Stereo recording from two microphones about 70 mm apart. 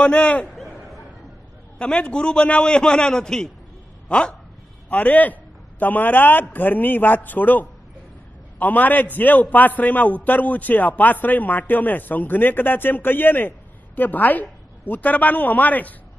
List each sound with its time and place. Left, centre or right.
0.0 s a man's voice: centre
0.6 s a sound: centre
1.8 s a man's voice: centre